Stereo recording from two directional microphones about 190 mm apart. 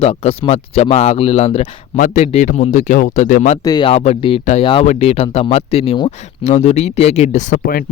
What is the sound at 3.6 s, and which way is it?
Speech, 25° left (ahead or behind).